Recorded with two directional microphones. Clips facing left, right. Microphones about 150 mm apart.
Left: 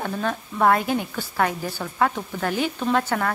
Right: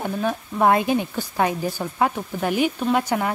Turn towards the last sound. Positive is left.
turn(degrees=-15)  # may be behind; listen again after turning